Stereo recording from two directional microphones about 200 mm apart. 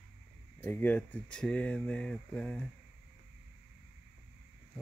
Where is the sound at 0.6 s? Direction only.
10° left (ahead or behind).